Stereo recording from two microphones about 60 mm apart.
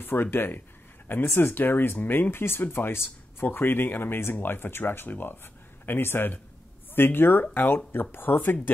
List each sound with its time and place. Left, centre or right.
0.0 s speech: left